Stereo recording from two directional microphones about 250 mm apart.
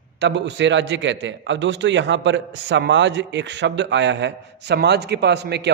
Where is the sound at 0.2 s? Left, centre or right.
Right.